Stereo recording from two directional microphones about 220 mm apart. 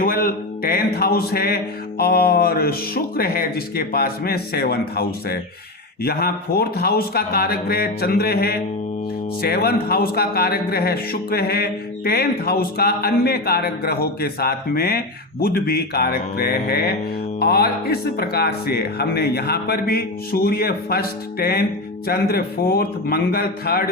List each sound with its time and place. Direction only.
0.0 s speech: 40° left (ahead or behind)